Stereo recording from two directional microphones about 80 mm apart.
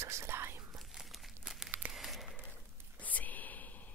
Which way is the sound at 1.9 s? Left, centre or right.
Centre.